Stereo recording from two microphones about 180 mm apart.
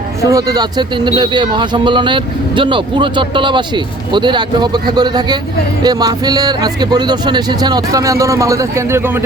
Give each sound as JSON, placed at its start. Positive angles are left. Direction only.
{"t": 0.2, "sound": "speech", "side_deg": -20}